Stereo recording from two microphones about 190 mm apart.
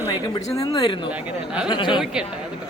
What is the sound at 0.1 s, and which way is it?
A woman's voice, 20° left (ahead or behind).